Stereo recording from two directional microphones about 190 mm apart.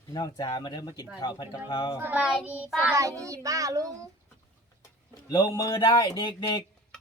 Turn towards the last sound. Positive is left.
turn(degrees=20)  # may be behind; listen again after turning